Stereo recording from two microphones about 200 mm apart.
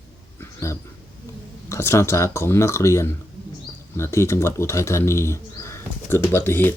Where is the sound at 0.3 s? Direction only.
15° left (ahead or behind).